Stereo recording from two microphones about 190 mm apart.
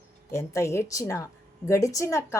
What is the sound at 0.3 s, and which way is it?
A woman's voice, 15° left (ahead or behind).